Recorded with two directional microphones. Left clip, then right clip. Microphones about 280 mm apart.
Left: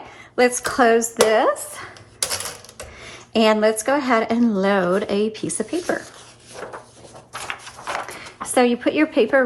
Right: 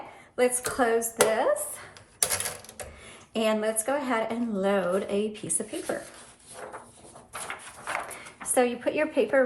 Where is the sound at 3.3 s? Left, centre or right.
Left.